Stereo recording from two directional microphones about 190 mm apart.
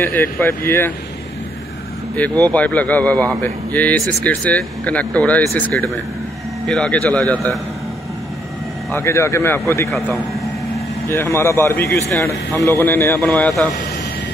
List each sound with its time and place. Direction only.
0.0 s speech: 10° left (ahead or behind)
2.1 s speech: 10° left (ahead or behind)
8.9 s speech: 15° left (ahead or behind)
9.8 s speech: centre (ahead or behind)
11.1 s speech: 10° left (ahead or behind)